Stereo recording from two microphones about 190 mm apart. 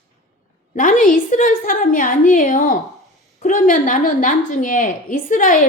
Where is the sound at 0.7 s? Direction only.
45° left (ahead or behind).